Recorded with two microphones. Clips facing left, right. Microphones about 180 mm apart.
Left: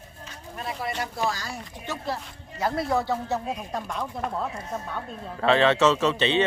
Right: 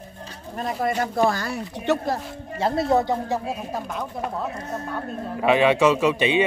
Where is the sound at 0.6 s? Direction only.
45° right (ahead or behind); by 2.0 s 60° right (ahead or behind).